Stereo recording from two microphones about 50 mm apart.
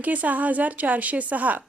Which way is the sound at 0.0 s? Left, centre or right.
Right.